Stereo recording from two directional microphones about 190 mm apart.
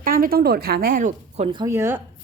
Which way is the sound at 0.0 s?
50° right (ahead or behind).